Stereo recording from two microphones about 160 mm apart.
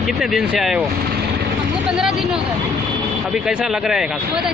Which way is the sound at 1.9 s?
5° right (ahead or behind).